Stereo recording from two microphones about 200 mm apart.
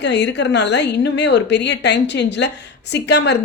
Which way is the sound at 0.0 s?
60° left (ahead or behind).